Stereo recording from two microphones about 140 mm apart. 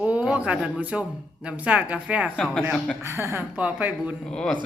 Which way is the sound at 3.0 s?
20° right (ahead or behind).